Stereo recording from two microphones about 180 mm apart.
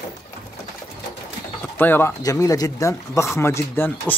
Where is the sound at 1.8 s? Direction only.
10° left (ahead or behind).